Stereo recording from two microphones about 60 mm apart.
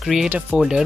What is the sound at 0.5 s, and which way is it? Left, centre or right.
Speech, centre.